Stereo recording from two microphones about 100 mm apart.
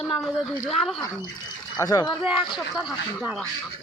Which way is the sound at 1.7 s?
40° left (ahead or behind).